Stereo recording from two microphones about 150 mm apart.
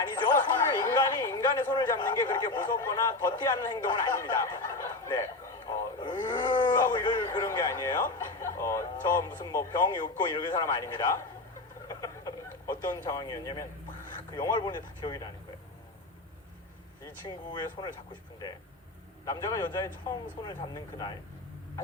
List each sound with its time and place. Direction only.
0.1 s speech: 30° left (ahead or behind)
11.9 s a sound: 20° left (ahead or behind)
12.9 s speech: 25° left (ahead or behind)
17.2 s speech: 30° left (ahead or behind)
19.2 s speech: 20° left (ahead or behind)